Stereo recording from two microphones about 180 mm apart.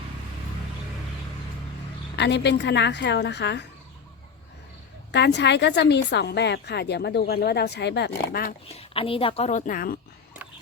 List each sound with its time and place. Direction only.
2.1 s a woman's voice: 70° left (ahead or behind)
5.1 s a woman's voice: 70° left (ahead or behind)
8.7 s speech: 30° left (ahead or behind); by 10.0 s 55° left (ahead or behind)